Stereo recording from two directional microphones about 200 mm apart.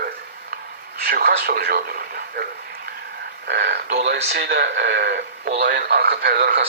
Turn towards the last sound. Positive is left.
turn(degrees=-50)  # may be behind; listen again after turning